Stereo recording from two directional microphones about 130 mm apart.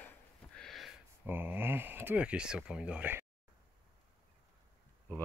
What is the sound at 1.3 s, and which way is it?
Speech, 15° right (ahead or behind).